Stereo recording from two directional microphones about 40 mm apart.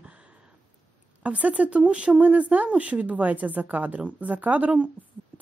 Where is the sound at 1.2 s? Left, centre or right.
Right.